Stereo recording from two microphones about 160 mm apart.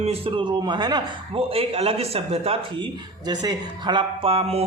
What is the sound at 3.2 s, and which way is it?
Speech, 25° right (ahead or behind).